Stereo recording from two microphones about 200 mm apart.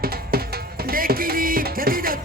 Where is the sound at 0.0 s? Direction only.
50° right (ahead or behind).